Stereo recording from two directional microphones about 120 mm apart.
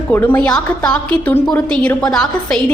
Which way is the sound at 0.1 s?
15° left (ahead or behind).